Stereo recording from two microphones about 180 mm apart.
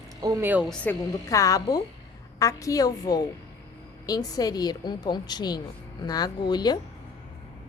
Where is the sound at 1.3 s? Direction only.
15° left (ahead or behind).